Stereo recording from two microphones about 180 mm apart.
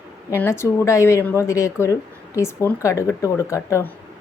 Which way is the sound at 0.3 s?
15° left (ahead or behind).